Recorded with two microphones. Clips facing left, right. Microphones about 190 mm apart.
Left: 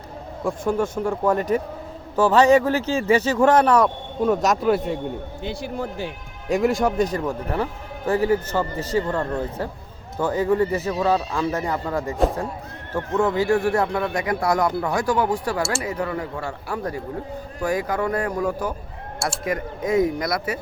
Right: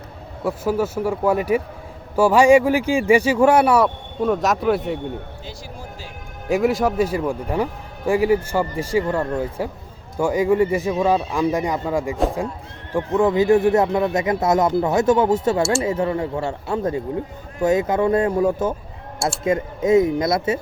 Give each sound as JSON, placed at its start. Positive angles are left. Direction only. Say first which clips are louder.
{"t": 0.4, "sound": "speech", "louder": "right 1 dB", "side_deg": -5}
{"t": 5.4, "sound": "speech", "louder": "left 8 dB", "side_deg": 60}
{"t": 6.5, "sound": "speech", "louder": "right 1 dB", "side_deg": 0}